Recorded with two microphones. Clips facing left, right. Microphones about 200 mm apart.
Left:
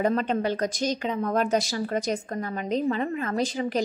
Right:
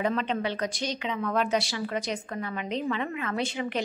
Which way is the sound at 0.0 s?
45° left (ahead or behind).